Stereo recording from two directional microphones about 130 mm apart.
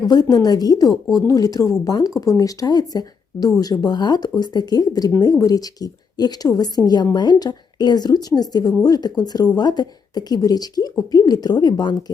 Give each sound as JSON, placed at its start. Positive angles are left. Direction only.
{"t": 0.0, "sound": "speech", "side_deg": 30}